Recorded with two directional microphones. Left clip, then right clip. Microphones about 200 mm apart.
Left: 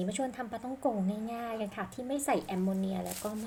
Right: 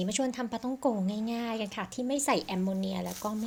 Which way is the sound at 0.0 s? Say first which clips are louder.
Right 3 dB; 30° right (ahead or behind).